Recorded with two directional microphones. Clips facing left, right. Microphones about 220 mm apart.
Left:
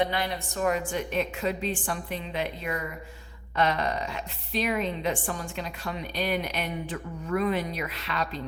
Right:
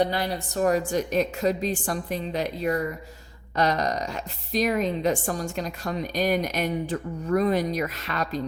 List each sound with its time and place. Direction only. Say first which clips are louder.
0.0 s a woman's voice: right 3 dB; 35° right (ahead or behind)